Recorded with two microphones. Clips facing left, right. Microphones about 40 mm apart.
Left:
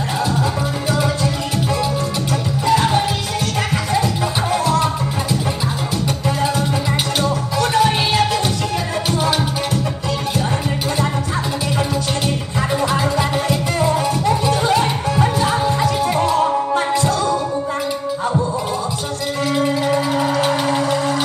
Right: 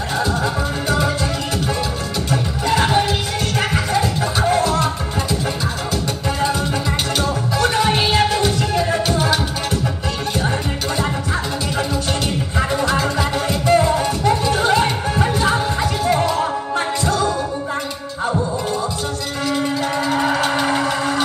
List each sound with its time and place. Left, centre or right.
2.7 s music: right
7.6 s music: right
8.4 s music: centre
12.8 s music: centre
13.7 s music: centre
14.5 s music: right